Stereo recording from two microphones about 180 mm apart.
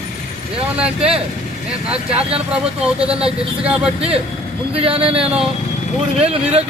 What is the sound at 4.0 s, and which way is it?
Speech, 35° right (ahead or behind).